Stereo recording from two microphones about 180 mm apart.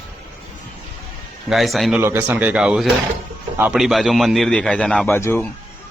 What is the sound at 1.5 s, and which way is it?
Speech, centre (ahead or behind).